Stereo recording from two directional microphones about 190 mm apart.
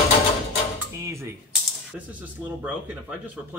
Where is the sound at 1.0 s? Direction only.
15° right (ahead or behind).